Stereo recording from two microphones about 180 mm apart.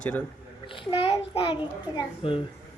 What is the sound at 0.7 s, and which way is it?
A child's voice, 30° left (ahead or behind).